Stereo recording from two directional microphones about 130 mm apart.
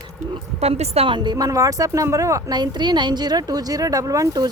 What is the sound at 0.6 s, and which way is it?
A woman's voice, 55° right (ahead or behind).